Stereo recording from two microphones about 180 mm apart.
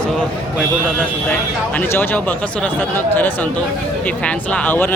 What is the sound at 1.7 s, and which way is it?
Speech, 10° left (ahead or behind).